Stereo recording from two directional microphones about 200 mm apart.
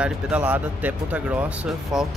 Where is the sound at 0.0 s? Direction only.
5° right (ahead or behind).